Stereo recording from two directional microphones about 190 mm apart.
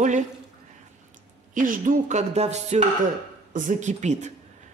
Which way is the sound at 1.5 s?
45° right (ahead or behind).